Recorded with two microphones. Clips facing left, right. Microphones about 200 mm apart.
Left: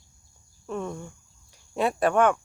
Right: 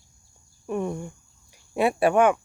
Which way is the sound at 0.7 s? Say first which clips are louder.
Right 4 dB; 15° right (ahead or behind).